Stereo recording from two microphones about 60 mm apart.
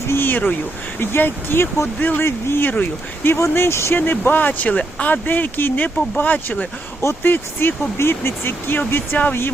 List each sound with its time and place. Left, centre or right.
0.1 s speech: left
2.2 s speech: left
2.6 s speech: left
3.5 s speech: left
4.0 s speech: left